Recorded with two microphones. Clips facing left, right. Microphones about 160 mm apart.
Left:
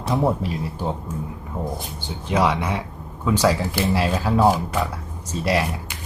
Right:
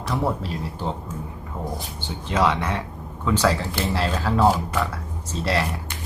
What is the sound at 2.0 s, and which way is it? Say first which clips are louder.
Speech: left 1 dB; 10° left (ahead or behind).